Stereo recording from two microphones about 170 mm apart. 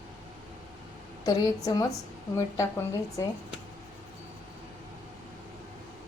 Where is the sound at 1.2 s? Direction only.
20° left (ahead or behind).